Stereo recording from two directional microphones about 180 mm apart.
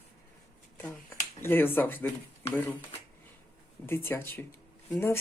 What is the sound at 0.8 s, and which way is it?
Speech, 10° left (ahead or behind).